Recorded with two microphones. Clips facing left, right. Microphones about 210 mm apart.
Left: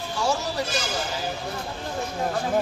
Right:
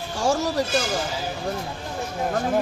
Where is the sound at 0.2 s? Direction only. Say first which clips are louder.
Right 4 dB; 45° right (ahead or behind).